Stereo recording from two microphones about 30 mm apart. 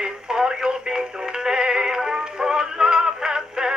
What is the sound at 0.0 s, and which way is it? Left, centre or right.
Synthetic singing, right.